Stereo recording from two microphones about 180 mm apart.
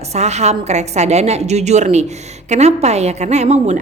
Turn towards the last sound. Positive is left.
turn(degrees=-40)  # may be behind; listen again after turning